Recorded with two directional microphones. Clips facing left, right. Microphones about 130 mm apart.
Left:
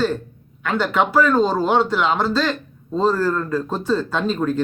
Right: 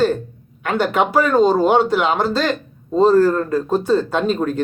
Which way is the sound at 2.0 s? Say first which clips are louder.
Right 1 dB; 50° right (ahead or behind).